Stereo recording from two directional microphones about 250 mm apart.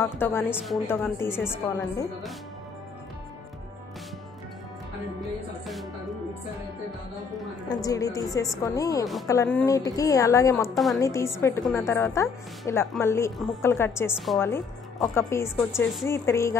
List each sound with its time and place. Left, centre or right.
0.0 s a woman's voice: centre
7.6 s a woman's voice: centre
10.7 s a woman's voice: centre
11.0 s a woman's voice: centre